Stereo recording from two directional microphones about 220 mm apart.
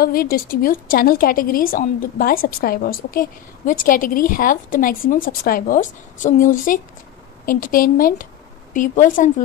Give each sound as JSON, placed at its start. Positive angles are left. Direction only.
{"t": 0.0, "sound": "a woman's voice", "side_deg": 40}